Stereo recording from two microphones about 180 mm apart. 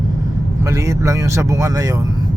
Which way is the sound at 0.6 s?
15° right (ahead or behind).